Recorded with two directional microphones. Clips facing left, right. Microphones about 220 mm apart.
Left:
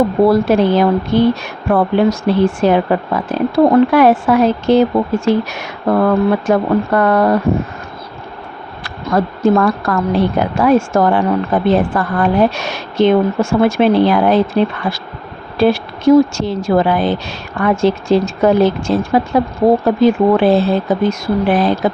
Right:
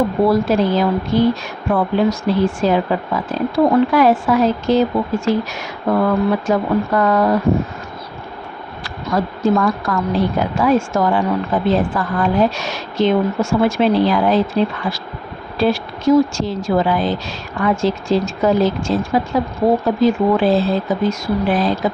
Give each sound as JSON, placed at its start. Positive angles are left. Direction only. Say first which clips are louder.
{"t": 0.3, "sound": "a woman's voice", "louder": "left 4 dB", "side_deg": 60}
{"t": 8.8, "sound": "a woman's voice", "louder": "left 4 dB", "side_deg": 55}